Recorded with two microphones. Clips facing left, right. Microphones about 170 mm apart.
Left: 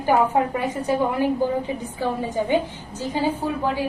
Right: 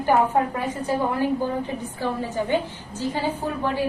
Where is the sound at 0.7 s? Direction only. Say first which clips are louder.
Left 2 dB; 15° left (ahead or behind).